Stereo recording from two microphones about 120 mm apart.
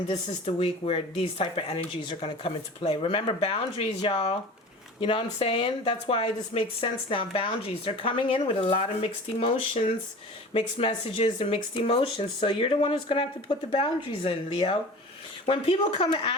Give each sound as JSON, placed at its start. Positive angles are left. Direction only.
{"t": 0.1, "sound": "speech", "side_deg": 55}